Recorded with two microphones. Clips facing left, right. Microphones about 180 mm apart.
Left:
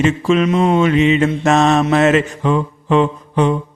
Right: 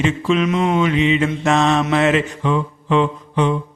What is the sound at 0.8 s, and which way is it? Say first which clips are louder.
Mantra: left 4 dB; 45° left (ahead or behind).